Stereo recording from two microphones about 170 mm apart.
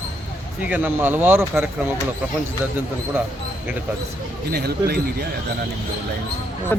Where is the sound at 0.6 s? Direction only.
10° right (ahead or behind).